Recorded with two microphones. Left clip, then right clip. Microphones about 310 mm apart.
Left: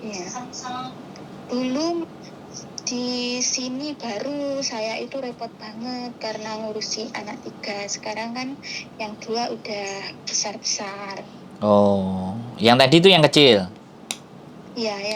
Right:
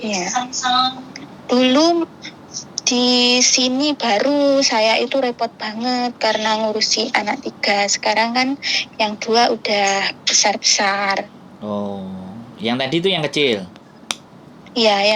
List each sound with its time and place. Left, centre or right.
0.0 s a sound: right
1.5 s a woman's voice: right
11.6 s mantra: left
12.5 s speech: left
14.8 s a woman's voice: right